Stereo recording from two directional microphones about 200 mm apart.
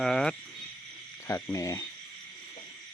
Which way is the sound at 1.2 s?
15° left (ahead or behind).